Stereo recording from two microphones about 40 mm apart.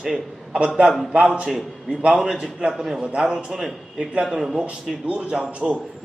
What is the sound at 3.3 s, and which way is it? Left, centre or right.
Speech, centre.